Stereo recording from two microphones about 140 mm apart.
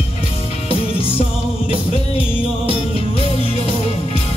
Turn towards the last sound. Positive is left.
turn(degrees=45)  # may be behind; listen again after turning